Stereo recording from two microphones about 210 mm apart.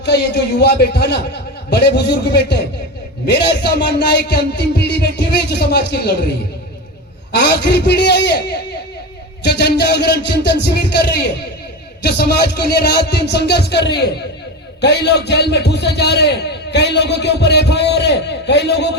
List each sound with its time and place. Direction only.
0.0 s a man's voice: 50° left (ahead or behind)
7.3 s a man's voice: 50° left (ahead or behind)